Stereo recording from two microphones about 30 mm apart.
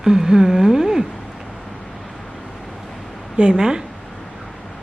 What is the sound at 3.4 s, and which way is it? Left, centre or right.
Speech, right.